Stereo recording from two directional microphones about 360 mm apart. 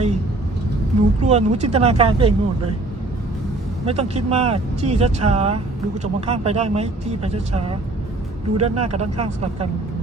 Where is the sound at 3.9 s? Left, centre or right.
Centre.